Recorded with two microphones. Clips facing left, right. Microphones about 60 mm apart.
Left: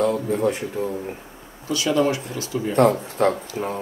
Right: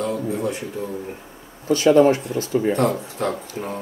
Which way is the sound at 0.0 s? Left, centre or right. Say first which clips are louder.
Left 3 dB; left.